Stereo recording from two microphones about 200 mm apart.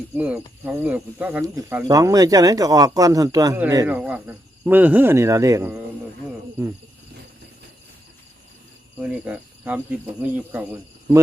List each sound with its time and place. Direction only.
0.2 s speech: 10° right (ahead or behind)
9.0 s cricket: 5° right (ahead or behind)
10.2 s speech: 10° right (ahead or behind)